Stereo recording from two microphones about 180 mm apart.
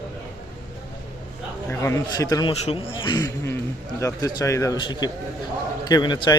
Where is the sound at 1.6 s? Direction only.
15° left (ahead or behind).